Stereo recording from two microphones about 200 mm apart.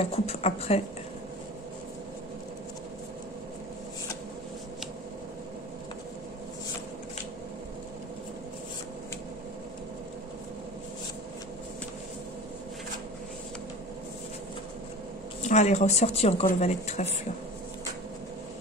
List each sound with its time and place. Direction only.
0.0 s speech: 30° left (ahead or behind)
15.4 s speech: 35° left (ahead or behind)